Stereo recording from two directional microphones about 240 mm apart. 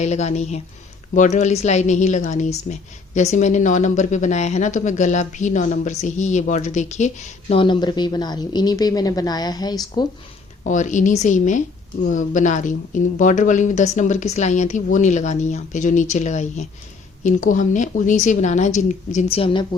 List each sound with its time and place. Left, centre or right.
0.0 s a woman's voice: left
10.6 s speech: left